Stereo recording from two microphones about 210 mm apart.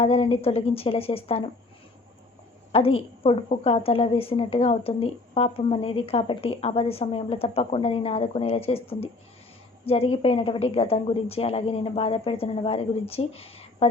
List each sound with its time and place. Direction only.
0.0 s a woman's voice: 25° left (ahead or behind)
2.7 s a woman's voice: 25° left (ahead or behind)